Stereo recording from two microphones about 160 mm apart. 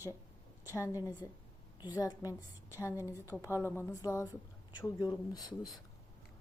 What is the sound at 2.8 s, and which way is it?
A woman's voice, 15° left (ahead or behind).